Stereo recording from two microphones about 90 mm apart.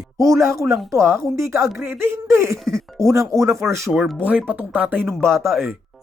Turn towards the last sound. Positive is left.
turn(degrees=0)  # may be behind; listen again after turning